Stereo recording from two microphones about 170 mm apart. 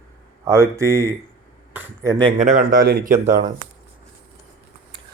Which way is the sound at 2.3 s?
45° right (ahead or behind).